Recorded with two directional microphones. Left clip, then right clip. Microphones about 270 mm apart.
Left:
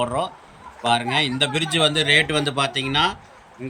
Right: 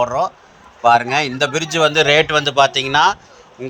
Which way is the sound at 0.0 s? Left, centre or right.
Centre.